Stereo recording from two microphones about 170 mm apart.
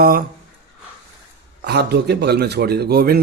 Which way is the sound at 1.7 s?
75° right (ahead or behind).